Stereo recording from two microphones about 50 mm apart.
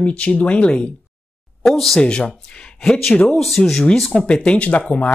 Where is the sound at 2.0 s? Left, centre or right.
Centre.